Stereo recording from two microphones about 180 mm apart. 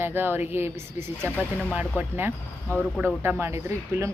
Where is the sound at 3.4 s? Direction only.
15° right (ahead or behind).